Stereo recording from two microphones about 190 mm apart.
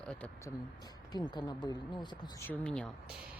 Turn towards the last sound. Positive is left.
turn(degrees=5)  # may be behind; listen again after turning